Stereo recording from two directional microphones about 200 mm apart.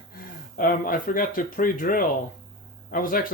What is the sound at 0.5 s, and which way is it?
Speech, 45° left (ahead or behind).